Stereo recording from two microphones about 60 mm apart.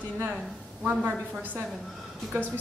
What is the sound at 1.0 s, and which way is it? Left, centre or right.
A woman's voice, right.